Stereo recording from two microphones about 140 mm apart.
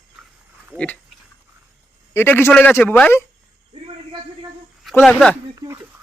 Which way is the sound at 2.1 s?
15° left (ahead or behind).